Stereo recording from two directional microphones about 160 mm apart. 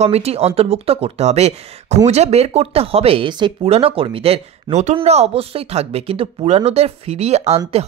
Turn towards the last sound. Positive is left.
turn(degrees=-40)  # may be behind; listen again after turning